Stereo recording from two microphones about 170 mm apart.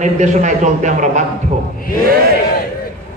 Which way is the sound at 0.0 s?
45° right (ahead or behind).